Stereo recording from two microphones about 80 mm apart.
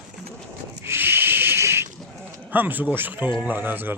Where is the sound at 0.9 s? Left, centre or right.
Right.